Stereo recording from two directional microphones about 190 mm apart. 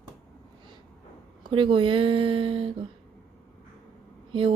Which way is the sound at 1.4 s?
25° right (ahead or behind).